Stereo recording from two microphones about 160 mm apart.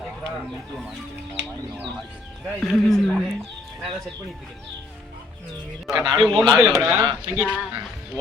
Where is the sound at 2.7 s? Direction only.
Centre (ahead or behind).